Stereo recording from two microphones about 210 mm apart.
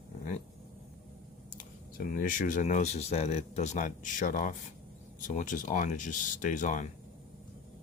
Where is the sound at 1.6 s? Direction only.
40° left (ahead or behind).